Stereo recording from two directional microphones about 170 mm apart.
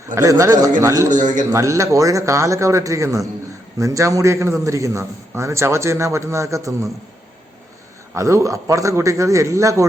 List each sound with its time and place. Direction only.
0.1 s a man's voice: 15° right (ahead or behind)
1.1 s a man's voice: 50° right (ahead or behind)
1.5 s a man's voice: 15° right (ahead or behind)
8.1 s a man's voice: 15° right (ahead or behind)